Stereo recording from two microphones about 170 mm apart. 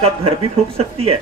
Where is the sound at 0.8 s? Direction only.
35° right (ahead or behind).